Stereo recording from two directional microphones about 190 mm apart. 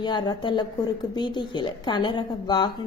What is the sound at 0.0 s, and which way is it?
A woman's voice, 20° left (ahead or behind).